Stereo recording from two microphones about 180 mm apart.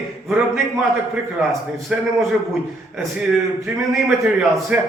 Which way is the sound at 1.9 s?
5° right (ahead or behind).